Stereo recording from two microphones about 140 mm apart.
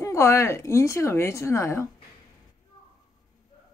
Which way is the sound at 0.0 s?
20° left (ahead or behind).